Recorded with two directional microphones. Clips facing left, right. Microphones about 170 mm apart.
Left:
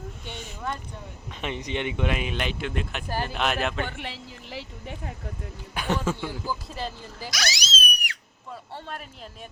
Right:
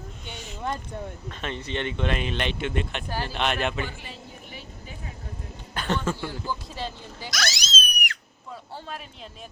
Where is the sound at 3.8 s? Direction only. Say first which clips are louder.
Left 2 dB; 65° left (ahead or behind); by 4.9 s 90° left.